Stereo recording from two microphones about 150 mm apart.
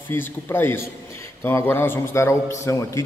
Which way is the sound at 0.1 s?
15° left (ahead or behind).